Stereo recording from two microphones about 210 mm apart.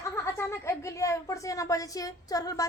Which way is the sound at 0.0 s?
15° left (ahead or behind).